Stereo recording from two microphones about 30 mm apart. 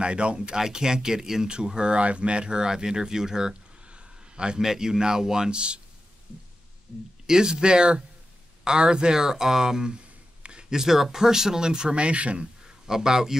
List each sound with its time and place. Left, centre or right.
0.0 s speech: right
0.6 s speech: centre
1.8 s speech: right
3.8 s a sound: right
4.6 s speech: centre
7.2 s speech: right
9.2 s speech: centre
10.4 s a sound: right
10.7 s speech: centre
11.9 s speech: right
12.6 s a man's voice: centre